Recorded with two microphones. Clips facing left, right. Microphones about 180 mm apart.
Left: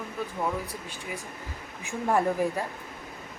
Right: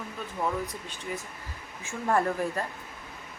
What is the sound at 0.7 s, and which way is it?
Speech, 10° left (ahead or behind).